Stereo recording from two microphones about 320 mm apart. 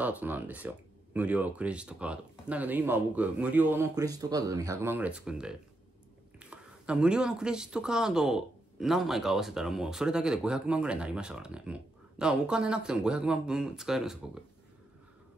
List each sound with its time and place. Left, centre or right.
0.0 s speech: centre